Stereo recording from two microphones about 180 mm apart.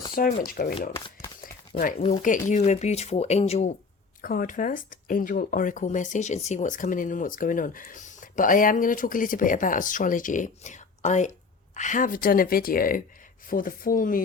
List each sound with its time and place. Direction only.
0.1 s speech: 50° left (ahead or behind)
0.9 s shuffling cards: 20° left (ahead or behind)
1.8 s speech: 50° left (ahead or behind)
4.2 s speech: 50° left (ahead or behind)